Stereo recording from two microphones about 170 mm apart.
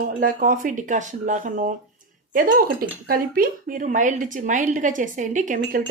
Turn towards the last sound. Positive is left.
turn(degrees=-50)  # may be behind; listen again after turning